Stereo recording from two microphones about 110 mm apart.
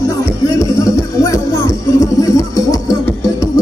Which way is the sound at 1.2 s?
30° left (ahead or behind).